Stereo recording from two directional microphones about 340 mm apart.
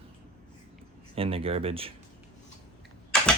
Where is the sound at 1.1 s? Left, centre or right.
Centre.